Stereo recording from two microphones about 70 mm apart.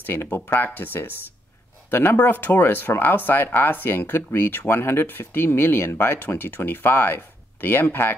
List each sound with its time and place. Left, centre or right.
0.0 s speech: left